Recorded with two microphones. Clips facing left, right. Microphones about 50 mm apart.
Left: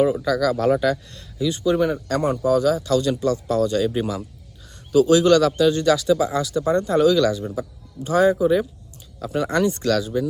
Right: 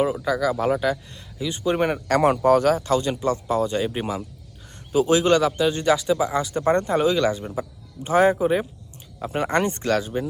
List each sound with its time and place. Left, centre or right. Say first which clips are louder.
0.0 s speech: left 3 dB; centre
1.8 s speech: even; right
2.2 s speech: right 1 dB; right
6.6 s speech: even; right
6.9 s speech: left 3 dB; right